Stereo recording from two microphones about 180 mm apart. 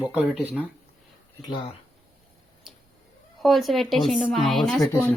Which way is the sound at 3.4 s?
Centre (ahead or behind).